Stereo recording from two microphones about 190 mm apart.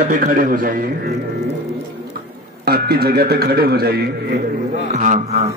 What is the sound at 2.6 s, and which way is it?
Speech, 55° right (ahead or behind).